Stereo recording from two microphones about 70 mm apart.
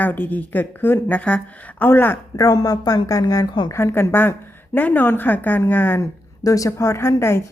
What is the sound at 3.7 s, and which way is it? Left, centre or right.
A woman's voice, left.